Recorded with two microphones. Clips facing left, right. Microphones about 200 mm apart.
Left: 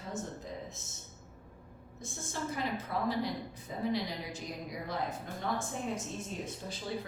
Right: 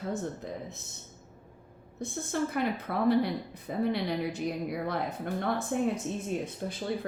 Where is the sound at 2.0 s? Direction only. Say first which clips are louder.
Right 8 dB; 60° right (ahead or behind).